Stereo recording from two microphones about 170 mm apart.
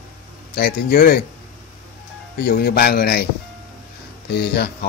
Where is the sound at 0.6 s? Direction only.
65° left (ahead or behind).